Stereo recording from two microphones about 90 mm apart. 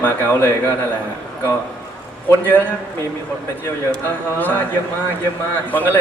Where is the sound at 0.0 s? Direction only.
25° left (ahead or behind).